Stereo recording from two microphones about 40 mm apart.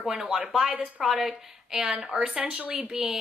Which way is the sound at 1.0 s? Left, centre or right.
Centre.